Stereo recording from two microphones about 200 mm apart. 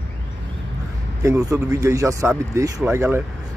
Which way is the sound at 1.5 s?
15° right (ahead or behind).